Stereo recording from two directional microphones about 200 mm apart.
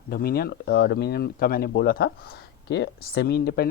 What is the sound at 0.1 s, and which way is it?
Speech, 50° left (ahead or behind).